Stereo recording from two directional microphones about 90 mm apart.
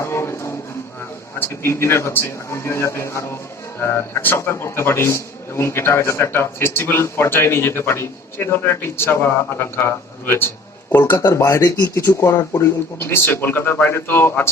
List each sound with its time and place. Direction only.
0.0 s music: 30° left (ahead or behind)
1.4 s a man's voice: 30° left (ahead or behind)
11.3 s speech: 35° left (ahead or behind)
11.9 s a man's voice: 30° left (ahead or behind)